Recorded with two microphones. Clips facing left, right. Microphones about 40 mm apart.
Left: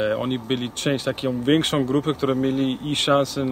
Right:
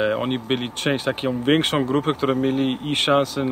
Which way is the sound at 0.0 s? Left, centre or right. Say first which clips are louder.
Right 1 dB; centre.